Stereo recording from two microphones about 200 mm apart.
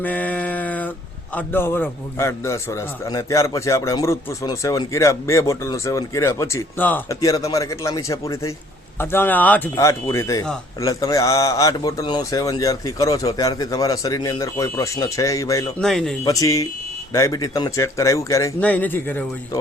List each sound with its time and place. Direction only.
0.0 s mantra: 10° left (ahead or behind)
1.4 s speech: 10° left (ahead or behind)
15.8 s speech: centre (ahead or behind)
16.2 s speech: 15° left (ahead or behind)